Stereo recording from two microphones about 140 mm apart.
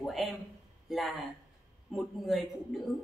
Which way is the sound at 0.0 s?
Centre (ahead or behind).